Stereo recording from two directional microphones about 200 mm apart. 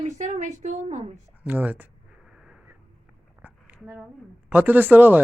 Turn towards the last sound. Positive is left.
turn(degrees=-10)  # may be behind; listen again after turning